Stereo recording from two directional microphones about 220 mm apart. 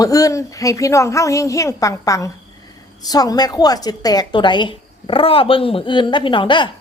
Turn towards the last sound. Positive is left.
turn(degrees=20)  # may be behind; listen again after turning